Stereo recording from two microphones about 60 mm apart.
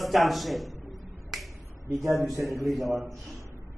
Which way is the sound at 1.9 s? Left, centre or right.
Right.